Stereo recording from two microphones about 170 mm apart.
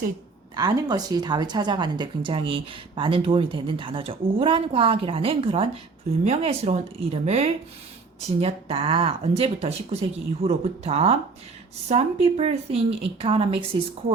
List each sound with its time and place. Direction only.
0.5 s a woman's voice: 25° right (ahead or behind)